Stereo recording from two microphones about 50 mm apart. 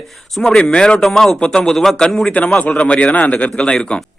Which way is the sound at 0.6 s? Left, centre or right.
Centre.